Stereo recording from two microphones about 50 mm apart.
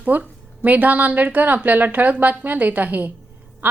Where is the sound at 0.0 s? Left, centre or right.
Right.